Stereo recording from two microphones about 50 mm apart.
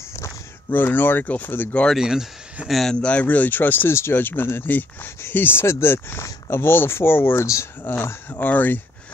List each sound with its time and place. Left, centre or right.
0.7 s speech: left
2.0 s speech: centre
2.9 s speech: left
3.3 s speech: left
4.6 s speech: left
5.3 s speech: left